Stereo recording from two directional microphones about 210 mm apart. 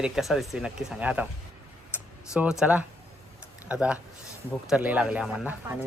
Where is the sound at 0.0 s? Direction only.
Centre (ahead or behind).